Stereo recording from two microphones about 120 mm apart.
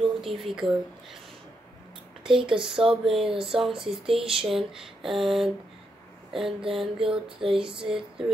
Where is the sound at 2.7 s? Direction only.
5° right (ahead or behind).